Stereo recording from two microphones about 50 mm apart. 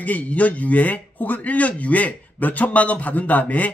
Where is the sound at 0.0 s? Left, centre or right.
Left.